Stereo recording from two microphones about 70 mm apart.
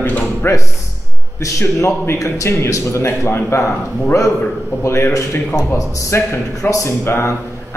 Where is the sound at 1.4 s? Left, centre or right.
Left.